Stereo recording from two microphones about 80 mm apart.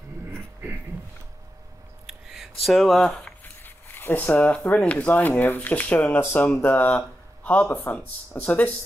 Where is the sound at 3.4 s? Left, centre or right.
Left.